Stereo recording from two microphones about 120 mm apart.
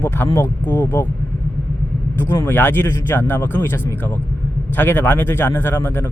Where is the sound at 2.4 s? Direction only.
15° left (ahead or behind).